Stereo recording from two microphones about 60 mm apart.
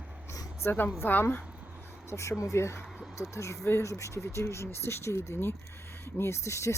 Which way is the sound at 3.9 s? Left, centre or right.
Left.